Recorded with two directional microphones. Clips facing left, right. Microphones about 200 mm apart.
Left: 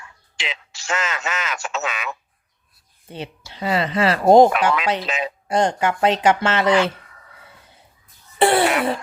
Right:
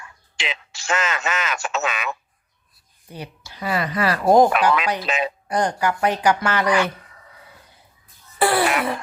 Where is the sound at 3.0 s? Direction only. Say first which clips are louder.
Left 3 dB; 25° left (ahead or behind).